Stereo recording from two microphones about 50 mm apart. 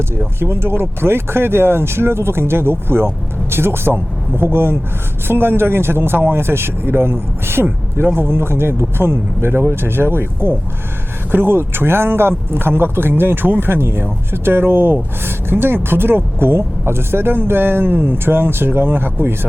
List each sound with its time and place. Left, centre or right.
0.3 s speech: right